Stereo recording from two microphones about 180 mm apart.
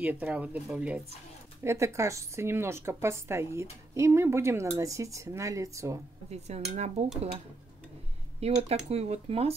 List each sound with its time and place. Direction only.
0.0 s a woman's voice: 10° right (ahead or behind)
6.3 s speech: 35° right (ahead or behind)
8.4 s speech: 35° right (ahead or behind)